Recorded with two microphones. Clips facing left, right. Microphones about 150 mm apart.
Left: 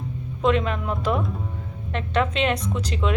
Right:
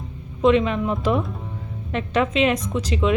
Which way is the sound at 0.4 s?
Centre (ahead or behind).